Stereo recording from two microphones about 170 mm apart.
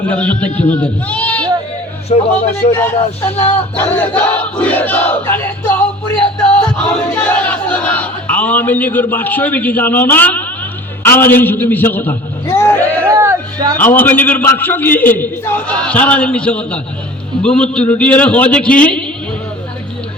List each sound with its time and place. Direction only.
0.1 s battle cry: 10° left (ahead or behind)
0.7 s speech: 10° left (ahead or behind)
2.0 s a man's voice: 40° left (ahead or behind)
3.3 s battle cry: 10° left (ahead or behind)
12.5 s music: 15° left (ahead or behind)
13.1 s music: 20° right (ahead or behind)
13.7 s battle cry: 10° left (ahead or behind)